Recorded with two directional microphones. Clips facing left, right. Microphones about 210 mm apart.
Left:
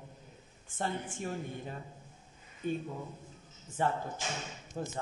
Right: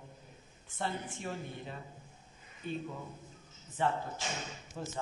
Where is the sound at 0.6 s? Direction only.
50° left (ahead or behind).